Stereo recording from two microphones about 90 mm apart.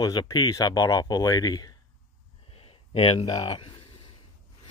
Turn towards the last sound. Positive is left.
turn(degrees=60)  # may be behind; listen again after turning